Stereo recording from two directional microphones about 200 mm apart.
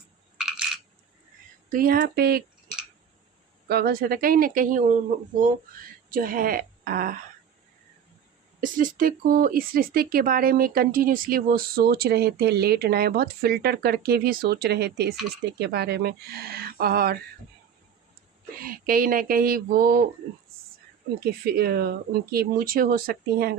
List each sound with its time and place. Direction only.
1.7 s speech: 45° right (ahead or behind)
3.7 s speech: 50° right (ahead or behind)
6.1 s speech: 45° right (ahead or behind)
8.6 s speech: 40° right (ahead or behind)
18.6 s speech: 45° right (ahead or behind)
21.2 s speech: 50° right (ahead or behind)